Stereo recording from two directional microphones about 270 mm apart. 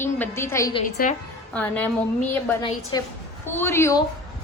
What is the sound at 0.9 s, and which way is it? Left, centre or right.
Speech, left.